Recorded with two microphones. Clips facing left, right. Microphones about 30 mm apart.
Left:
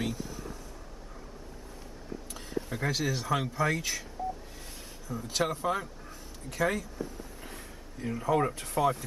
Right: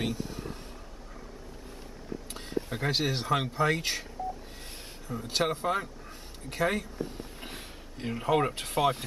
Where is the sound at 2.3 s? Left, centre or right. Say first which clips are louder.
Right 1 dB; right.